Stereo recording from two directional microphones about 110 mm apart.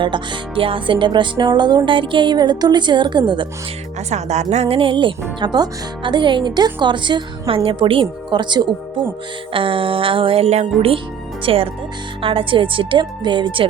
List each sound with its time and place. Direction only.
0.0 s music: 45° right (ahead or behind)
4.1 s speech: 90° right
4.8 s music: 50° right (ahead or behind); by 11.0 s 65° right (ahead or behind)
11.4 s speech: 60° right (ahead or behind)
12.2 s music: 55° right (ahead or behind)